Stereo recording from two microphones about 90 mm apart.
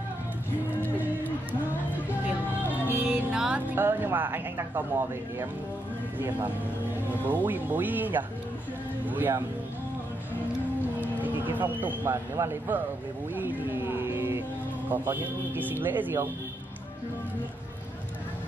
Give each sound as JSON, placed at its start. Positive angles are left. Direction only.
{"t": 2.9, "sound": "speech", "side_deg": -15}
{"t": 11.0, "sound": "a sound", "side_deg": -20}
{"t": 11.5, "sound": "speech", "side_deg": -20}